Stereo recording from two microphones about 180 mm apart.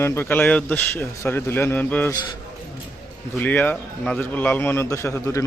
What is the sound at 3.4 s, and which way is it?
A man's voice, 10° left (ahead or behind).